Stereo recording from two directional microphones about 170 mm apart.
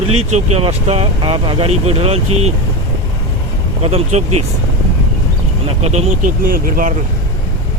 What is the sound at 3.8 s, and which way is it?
Speech, 35° right (ahead or behind).